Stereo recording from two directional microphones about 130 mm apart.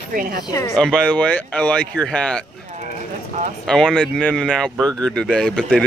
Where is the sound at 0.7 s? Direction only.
5° left (ahead or behind).